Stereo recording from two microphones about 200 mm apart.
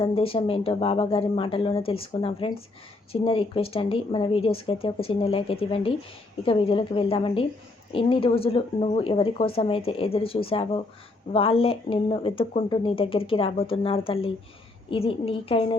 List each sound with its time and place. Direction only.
0.0 s speech: 25° left (ahead or behind)